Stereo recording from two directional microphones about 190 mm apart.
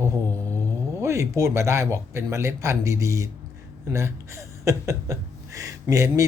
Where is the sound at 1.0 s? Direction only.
15° right (ahead or behind).